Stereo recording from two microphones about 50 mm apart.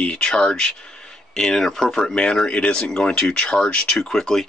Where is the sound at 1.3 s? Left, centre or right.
Centre.